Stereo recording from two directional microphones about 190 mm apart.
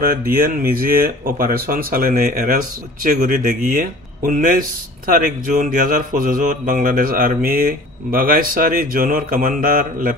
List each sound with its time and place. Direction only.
0.1 s speech: 50° right (ahead or behind)